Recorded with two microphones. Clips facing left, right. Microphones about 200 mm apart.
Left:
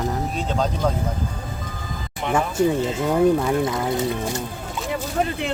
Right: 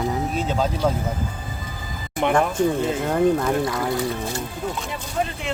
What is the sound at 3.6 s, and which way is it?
Speech, 20° left (ahead or behind).